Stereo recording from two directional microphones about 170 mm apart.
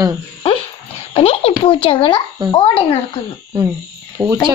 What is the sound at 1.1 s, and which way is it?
Speech, 35° left (ahead or behind).